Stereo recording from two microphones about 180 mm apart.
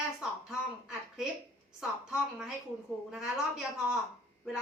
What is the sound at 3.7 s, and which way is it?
Speech, 5° right (ahead or behind).